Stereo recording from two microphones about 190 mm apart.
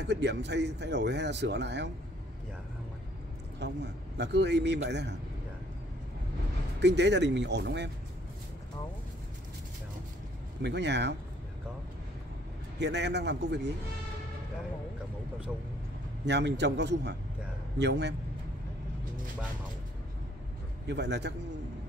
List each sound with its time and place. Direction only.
0.0 s speech: 65° right (ahead or behind)
3.5 s speech: 65° right (ahead or behind)
6.8 s speech: 65° right (ahead or behind)
10.6 s speech: 65° right (ahead or behind)
12.7 s speech: 65° right (ahead or behind)
16.3 s speech: 65° right (ahead or behind)
20.8 s speech: 65° right (ahead or behind)